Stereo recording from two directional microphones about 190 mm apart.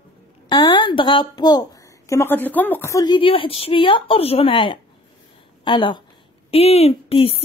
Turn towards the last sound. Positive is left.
turn(degrees=30)  # may be behind; listen again after turning